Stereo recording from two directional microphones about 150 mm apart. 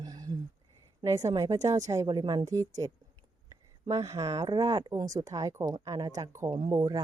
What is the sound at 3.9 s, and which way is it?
Speech, 20° right (ahead or behind).